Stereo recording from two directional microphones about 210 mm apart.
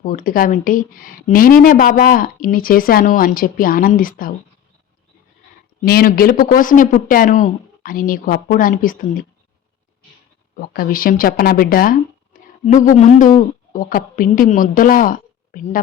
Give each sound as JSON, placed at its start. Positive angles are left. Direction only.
{"t": 0.0, "sound": "speech", "side_deg": 40}
{"t": 5.8, "sound": "speech", "side_deg": 45}
{"t": 10.5, "sound": "speech", "side_deg": 45}